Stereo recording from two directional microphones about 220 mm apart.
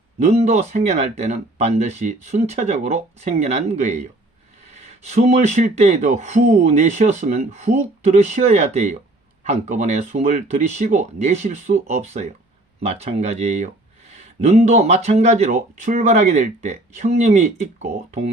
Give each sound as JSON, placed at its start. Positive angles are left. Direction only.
{"t": 0.2, "sound": "speech", "side_deg": -30}